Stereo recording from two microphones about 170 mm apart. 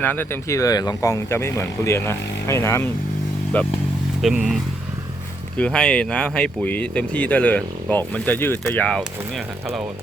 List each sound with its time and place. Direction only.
0.0 s speech: 10° left (ahead or behind)
4.2 s speech: centre (ahead or behind)